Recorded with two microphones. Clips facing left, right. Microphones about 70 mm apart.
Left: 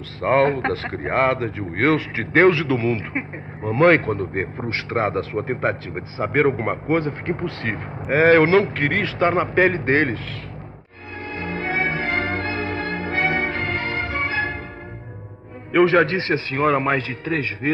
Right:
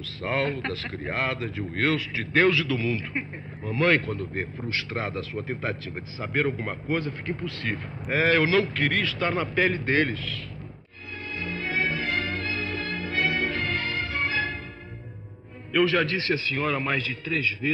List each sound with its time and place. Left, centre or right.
0.2 s speech: left
11.2 s music: left
15.7 s speech: left